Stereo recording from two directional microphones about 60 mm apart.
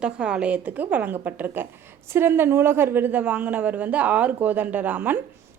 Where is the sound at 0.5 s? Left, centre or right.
Right.